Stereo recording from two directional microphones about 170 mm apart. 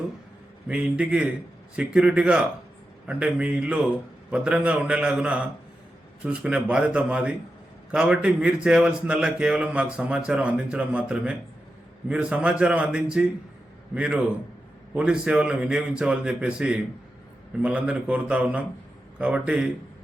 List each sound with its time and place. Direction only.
0.7 s a man's voice: 5° right (ahead or behind)